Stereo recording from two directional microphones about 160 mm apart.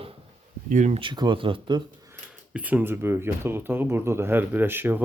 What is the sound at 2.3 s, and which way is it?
Speech, 10° right (ahead or behind).